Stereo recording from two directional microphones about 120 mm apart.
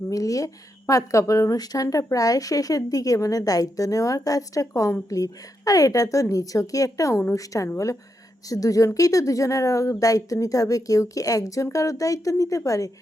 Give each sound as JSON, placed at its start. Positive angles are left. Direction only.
{"t": 0.1, "sound": "a woman's voice", "side_deg": 30}